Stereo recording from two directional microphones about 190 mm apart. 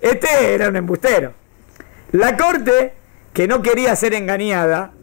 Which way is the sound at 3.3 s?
20° left (ahead or behind).